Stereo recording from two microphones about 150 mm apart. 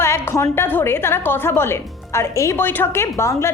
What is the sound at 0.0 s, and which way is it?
A woman's voice, 15° left (ahead or behind).